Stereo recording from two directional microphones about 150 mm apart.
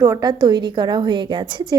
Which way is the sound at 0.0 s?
25° right (ahead or behind).